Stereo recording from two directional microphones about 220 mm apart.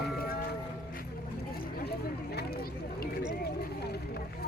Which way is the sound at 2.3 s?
45° left (ahead or behind).